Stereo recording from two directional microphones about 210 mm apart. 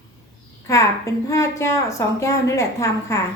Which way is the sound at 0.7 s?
15° left (ahead or behind).